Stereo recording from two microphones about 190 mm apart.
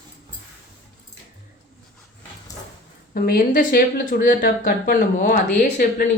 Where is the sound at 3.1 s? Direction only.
50° left (ahead or behind).